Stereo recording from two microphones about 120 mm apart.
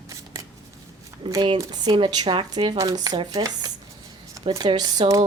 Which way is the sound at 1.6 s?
35° right (ahead or behind).